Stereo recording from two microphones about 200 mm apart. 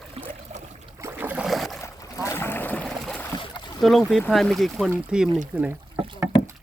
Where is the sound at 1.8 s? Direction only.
15° left (ahead or behind).